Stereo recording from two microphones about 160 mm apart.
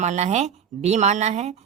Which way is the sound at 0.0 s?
45° right (ahead or behind).